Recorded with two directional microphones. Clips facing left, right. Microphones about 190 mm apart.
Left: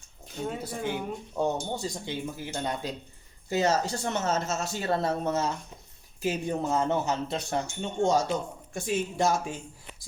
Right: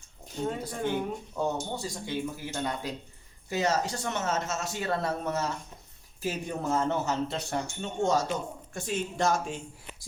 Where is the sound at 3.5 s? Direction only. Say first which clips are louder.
Left 2 dB; 30° left (ahead or behind).